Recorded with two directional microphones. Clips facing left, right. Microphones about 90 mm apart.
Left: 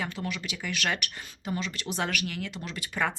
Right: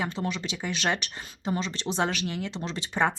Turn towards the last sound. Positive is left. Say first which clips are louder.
# right 4 dB
turn(degrees=-25)  # may be behind; listen again after turning